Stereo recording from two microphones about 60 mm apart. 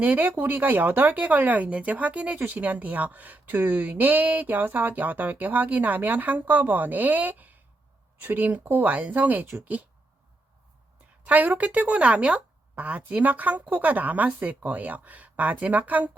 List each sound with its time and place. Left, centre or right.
0.0 s speech: right
11.3 s speech: right